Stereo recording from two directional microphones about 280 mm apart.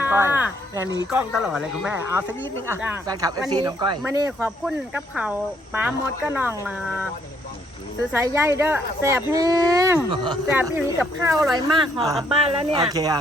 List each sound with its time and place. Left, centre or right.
0.0 s music: centre
1.1 s speech: centre
8.1 s speech: centre
11.5 s speech: centre